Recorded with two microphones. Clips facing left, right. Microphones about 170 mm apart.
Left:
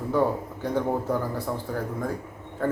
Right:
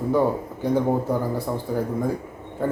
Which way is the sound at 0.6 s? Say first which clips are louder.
Right 4 dB; 10° right (ahead or behind).